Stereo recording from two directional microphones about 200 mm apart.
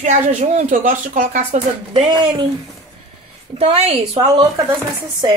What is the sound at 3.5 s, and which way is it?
Speech, 30° right (ahead or behind).